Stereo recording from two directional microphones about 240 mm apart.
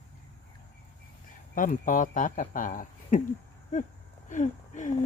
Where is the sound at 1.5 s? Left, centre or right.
Left.